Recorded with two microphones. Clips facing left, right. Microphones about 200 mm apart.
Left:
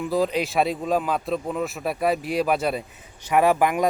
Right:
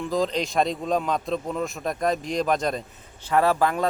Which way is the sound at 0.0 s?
10° left (ahead or behind).